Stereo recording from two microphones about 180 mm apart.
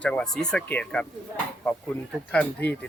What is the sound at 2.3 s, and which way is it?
Speech, 10° left (ahead or behind).